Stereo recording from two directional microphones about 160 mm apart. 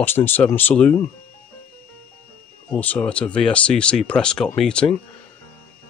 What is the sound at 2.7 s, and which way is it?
Speech, 10° left (ahead or behind).